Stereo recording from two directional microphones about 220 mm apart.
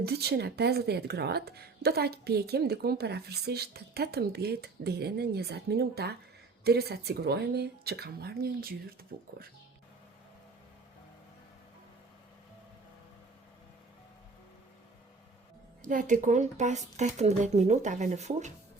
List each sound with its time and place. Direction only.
0.0 s speech: 45° right (ahead or behind)
15.8 s a woman's voice: 40° right (ahead or behind)